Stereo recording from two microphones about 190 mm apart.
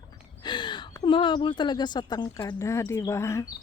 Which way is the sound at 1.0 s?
25° left (ahead or behind).